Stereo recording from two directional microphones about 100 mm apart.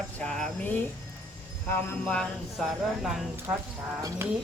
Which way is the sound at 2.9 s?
5° right (ahead or behind).